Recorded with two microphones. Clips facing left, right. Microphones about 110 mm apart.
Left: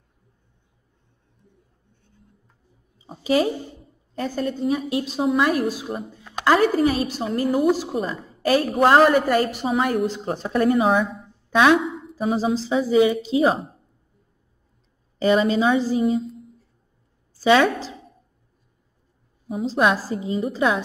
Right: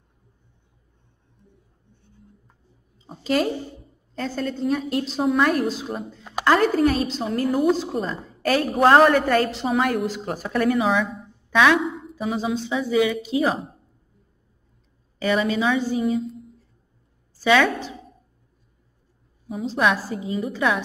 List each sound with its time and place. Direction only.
3.0 s a woman's voice: 10° left (ahead or behind)
9.1 s a woman's voice: 10° left (ahead or behind); by 11.1 s 40° left (ahead or behind)
11.5 s a woman's voice: 25° left (ahead or behind)
11.8 s a sound: centre (ahead or behind)
12.2 s a woman's voice: 35° left (ahead or behind)
15.1 s a woman's voice: 30° left (ahead or behind)
16.2 s a sound: centre (ahead or behind)
17.4 s a woman's voice: 25° left (ahead or behind)
19.6 s a woman's voice: 30° left (ahead or behind)